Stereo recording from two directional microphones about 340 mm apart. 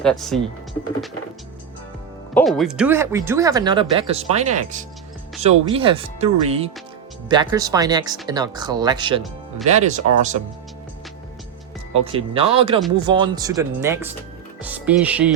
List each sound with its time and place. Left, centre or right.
0.0 s speech: centre
2.3 s speech: centre; by 10.0 s right
11.9 s speech: centre